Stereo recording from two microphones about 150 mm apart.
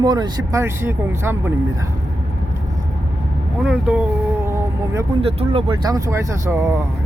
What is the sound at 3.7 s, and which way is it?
Speech, 5° right (ahead or behind).